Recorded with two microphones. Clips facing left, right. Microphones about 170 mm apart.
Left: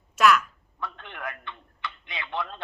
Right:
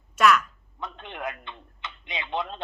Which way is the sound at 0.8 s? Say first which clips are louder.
Right 2 dB; 20° right (ahead or behind).